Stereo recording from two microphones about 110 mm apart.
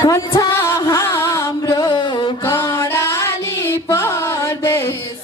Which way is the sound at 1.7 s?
45° left (ahead or behind).